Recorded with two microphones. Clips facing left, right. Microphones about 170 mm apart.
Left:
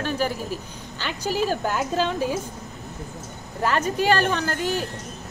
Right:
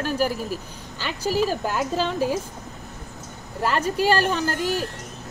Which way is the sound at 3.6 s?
5° right (ahead or behind).